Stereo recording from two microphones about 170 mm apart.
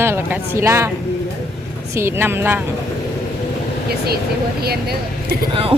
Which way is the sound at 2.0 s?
15° right (ahead or behind).